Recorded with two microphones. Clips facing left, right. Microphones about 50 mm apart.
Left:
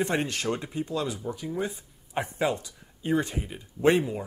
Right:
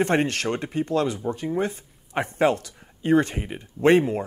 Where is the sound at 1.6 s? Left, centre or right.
Right.